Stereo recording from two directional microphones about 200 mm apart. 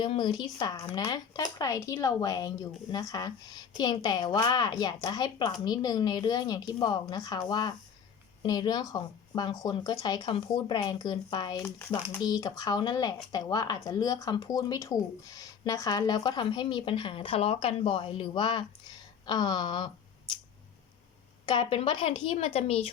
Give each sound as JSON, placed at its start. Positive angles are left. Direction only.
{"t": 0.0, "sound": "speech", "side_deg": 25}
{"t": 21.4, "sound": "speech", "side_deg": 25}